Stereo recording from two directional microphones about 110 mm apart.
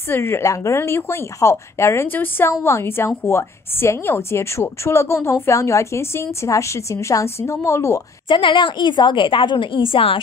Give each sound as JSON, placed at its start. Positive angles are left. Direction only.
{"t": 0.1, "sound": "a woman's voice", "side_deg": 20}
{"t": 8.3, "sound": "a woman's voice", "side_deg": 45}